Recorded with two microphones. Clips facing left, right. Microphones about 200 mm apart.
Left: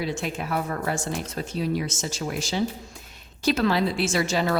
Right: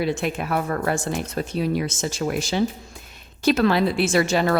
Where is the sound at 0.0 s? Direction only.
60° right (ahead or behind).